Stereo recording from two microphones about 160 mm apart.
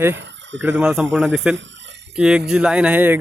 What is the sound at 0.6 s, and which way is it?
Speech, 5° right (ahead or behind).